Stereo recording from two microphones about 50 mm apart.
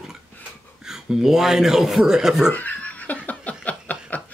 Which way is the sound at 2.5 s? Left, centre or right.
Left.